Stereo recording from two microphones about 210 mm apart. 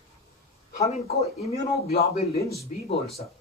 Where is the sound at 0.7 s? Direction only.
30° left (ahead or behind).